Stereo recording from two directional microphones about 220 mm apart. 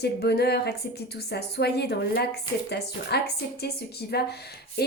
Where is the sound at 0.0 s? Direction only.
50° left (ahead or behind).